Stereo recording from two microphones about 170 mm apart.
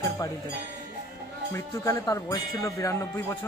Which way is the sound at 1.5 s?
20° left (ahead or behind).